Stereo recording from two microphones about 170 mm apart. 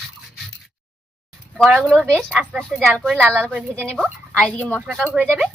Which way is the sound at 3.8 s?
5° left (ahead or behind).